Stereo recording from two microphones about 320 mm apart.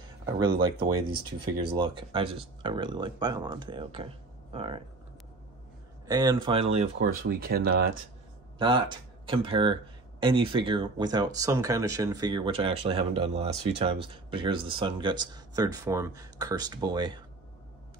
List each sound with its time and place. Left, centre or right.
0.6 s speech: centre
6.0 s speech: centre
7.2 s speech: right
8.5 s speech: centre